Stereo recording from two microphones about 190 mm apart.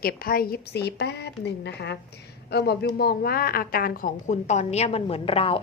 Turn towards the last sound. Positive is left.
turn(degrees=30)  # may be behind; listen again after turning